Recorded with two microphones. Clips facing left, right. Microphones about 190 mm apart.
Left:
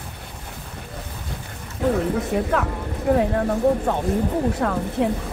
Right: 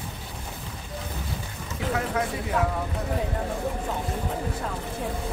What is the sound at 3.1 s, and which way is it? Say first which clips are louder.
Speech: left 13 dB; 90° left.